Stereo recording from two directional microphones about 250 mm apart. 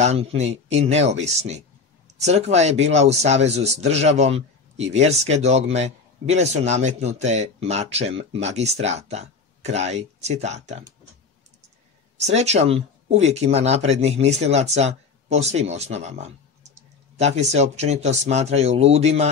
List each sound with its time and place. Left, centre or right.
0.0 s speech: right
12.3 s speech: right